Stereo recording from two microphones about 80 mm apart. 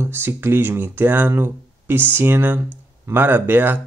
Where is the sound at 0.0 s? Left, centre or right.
Right.